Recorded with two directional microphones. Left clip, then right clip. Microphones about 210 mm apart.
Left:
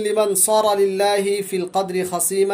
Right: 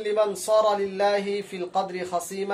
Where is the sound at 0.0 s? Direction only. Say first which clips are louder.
Left 5 dB; 50° left (ahead or behind).